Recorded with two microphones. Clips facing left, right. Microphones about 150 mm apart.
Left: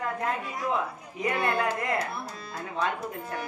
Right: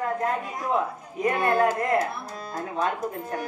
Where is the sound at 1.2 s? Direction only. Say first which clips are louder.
Right 5 dB; 45° right (ahead or behind).